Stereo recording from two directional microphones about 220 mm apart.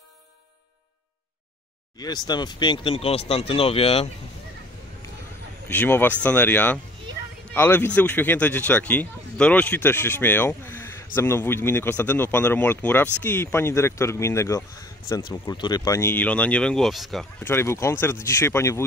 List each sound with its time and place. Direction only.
2.0 s speech: 20° left (ahead or behind)
5.7 s speech: 10° left (ahead or behind)